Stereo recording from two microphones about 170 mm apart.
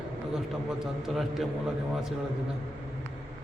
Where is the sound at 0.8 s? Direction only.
Centre (ahead or behind).